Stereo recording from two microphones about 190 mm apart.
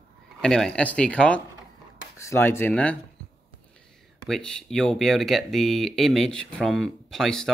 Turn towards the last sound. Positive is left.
turn(degrees=0)  # may be behind; listen again after turning